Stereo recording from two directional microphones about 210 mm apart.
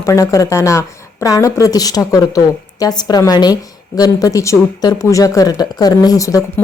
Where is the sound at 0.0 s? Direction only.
15° left (ahead or behind).